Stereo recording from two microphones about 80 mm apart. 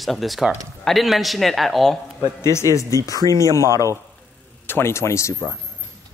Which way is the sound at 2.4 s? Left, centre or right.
Left.